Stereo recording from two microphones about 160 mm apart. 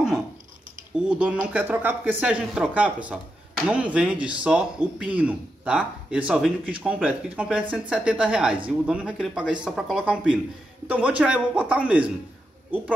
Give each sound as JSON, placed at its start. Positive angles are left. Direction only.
{"t": 0.9, "sound": "speech", "side_deg": -10}